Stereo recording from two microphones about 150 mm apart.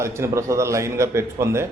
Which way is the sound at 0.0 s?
20° right (ahead or behind).